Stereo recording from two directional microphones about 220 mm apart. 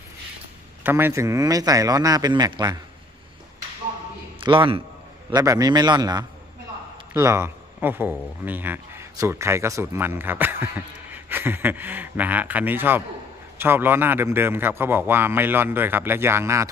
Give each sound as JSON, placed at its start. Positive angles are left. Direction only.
{"t": 0.9, "sound": "speech", "side_deg": -10}
{"t": 4.4, "sound": "a man's voice", "side_deg": -25}